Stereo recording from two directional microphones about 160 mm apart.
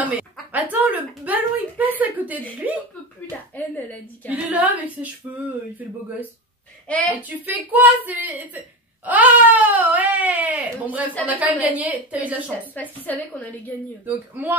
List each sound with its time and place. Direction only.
0.0 s speech: 10° right (ahead or behind)
3.5 s a woman's voice: 10° left (ahead or behind)
4.3 s speech: 10° right (ahead or behind)
6.9 s a woman's voice: 10° left (ahead or behind)
7.2 s speech: 10° right (ahead or behind)
12.7 s a woman's voice: 10° left (ahead or behind)
14.0 s speech: 10° right (ahead or behind)